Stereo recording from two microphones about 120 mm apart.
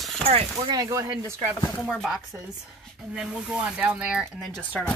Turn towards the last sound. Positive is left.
turn(degrees=10)  # may be behind; listen again after turning